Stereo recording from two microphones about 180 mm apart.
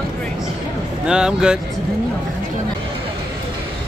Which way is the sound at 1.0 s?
5° right (ahead or behind).